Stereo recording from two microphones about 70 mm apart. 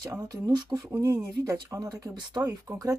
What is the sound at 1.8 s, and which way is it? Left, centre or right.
Speech, right.